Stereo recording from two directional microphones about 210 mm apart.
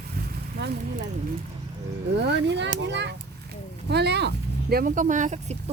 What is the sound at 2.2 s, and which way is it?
A child's voice, 55° right (ahead or behind).